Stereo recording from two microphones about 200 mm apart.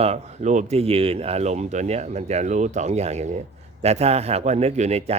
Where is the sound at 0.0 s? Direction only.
35° right (ahead or behind).